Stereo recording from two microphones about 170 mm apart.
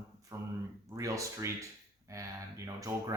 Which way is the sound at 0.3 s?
15° right (ahead or behind).